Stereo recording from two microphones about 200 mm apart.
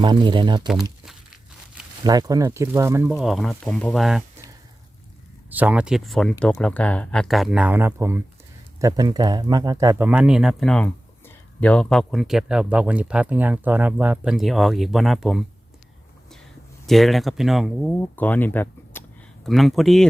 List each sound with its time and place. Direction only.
0.0 s speech: 25° right (ahead or behind)
2.0 s speech: 20° right (ahead or behind); by 4.2 s centre (ahead or behind)
5.5 s speech: 10° right (ahead or behind)
16.8 s speech: centre (ahead or behind)